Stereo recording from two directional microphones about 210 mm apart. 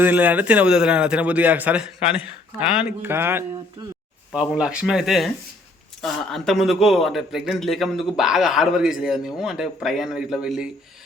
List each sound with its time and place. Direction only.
0.0 s a man's voice: 10° right (ahead or behind)
4.3 s a man's voice: 5° right (ahead or behind)